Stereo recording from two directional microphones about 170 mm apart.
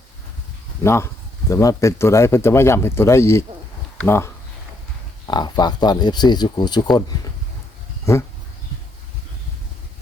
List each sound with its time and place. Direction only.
0.9 s speech: 15° left (ahead or behind)
5.3 s speech: 25° left (ahead or behind)
8.1 s speech: 15° left (ahead or behind)